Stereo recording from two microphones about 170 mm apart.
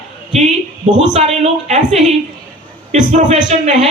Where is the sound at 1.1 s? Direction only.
40° right (ahead or behind).